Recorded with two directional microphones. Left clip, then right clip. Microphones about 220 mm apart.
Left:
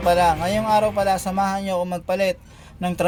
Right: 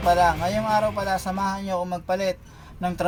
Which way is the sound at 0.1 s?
35° left (ahead or behind).